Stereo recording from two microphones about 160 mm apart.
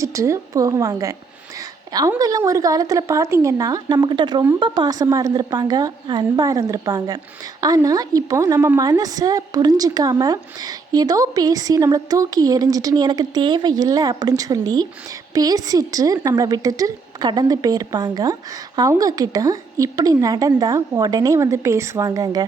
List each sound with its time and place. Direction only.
0.0 s speech: 20° right (ahead or behind)